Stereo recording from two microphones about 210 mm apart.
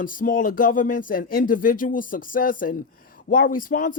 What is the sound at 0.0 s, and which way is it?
Speech, 40° left (ahead or behind).